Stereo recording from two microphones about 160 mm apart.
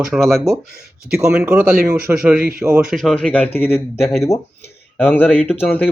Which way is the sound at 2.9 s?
Centre (ahead or behind).